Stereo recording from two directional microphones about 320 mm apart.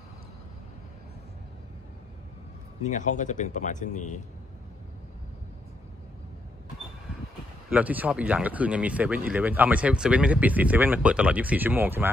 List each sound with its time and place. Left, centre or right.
2.8 s speech: left
7.7 s speech: centre